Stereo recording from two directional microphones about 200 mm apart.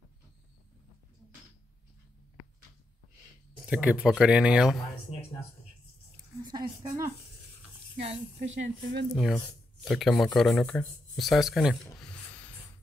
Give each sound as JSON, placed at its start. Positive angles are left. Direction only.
{"t": 3.6, "sound": "speech", "side_deg": -5}
{"t": 6.5, "sound": "speech", "side_deg": -15}
{"t": 8.4, "sound": "speech", "side_deg": -60}
{"t": 9.1, "sound": "speech", "side_deg": 0}